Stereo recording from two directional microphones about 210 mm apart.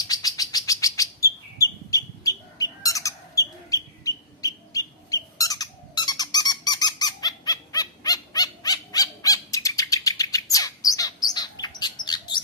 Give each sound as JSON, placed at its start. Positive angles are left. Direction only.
{"t": 0.0, "sound": "bird", "side_deg": 15}
{"t": 11.2, "sound": "chirp", "side_deg": 20}